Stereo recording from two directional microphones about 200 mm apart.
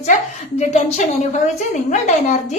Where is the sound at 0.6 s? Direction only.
35° left (ahead or behind).